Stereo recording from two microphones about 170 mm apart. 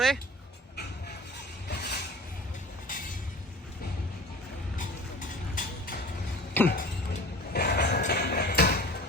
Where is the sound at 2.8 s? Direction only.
50° left (ahead or behind).